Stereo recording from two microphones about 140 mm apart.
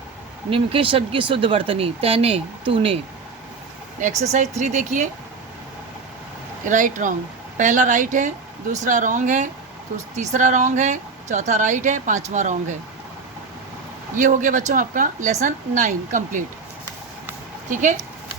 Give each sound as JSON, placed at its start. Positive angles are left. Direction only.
{"t": 0.5, "sound": "speech", "side_deg": -40}
{"t": 4.2, "sound": "speech", "side_deg": -55}
{"t": 6.7, "sound": "speech", "side_deg": -65}
{"t": 14.2, "sound": "a woman's voice", "side_deg": -65}
{"t": 17.7, "sound": "speech", "side_deg": -65}